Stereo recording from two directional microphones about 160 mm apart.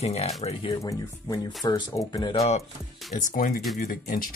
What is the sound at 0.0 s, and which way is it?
Speech, 40° left (ahead or behind).